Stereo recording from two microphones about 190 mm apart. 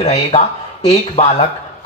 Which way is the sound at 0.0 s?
35° left (ahead or behind).